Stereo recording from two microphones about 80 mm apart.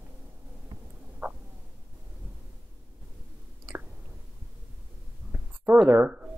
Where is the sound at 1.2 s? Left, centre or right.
Centre.